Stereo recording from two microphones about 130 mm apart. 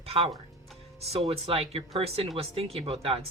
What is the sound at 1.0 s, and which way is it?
Speech, 50° right (ahead or behind).